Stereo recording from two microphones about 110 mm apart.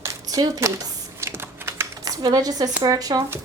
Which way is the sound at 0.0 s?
30° right (ahead or behind).